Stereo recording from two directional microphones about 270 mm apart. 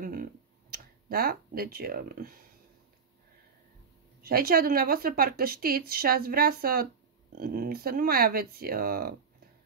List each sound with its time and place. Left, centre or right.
0.0 s tick: right
1.0 s speech: right
4.2 s speech: right